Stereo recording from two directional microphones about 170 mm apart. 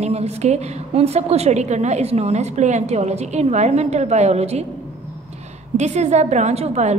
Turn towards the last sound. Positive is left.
turn(degrees=-40)  # may be behind; listen again after turning